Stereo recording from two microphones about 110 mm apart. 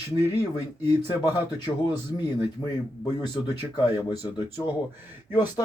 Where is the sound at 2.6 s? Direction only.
35° left (ahead or behind).